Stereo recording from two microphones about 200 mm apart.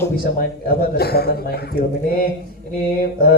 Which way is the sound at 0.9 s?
50° left (ahead or behind).